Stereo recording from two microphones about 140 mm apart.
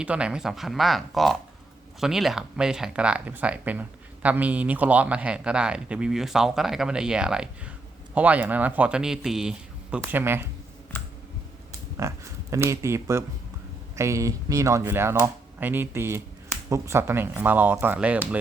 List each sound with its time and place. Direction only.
0.0 s speech: 10° right (ahead or behind)
11.9 s speech: 20° right (ahead or behind)